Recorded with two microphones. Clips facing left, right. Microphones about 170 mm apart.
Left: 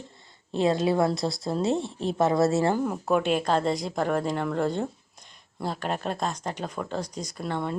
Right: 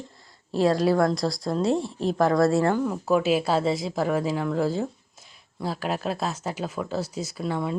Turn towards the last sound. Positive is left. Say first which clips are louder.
# right 2 dB
turn(degrees=-5)  # may be behind; listen again after turning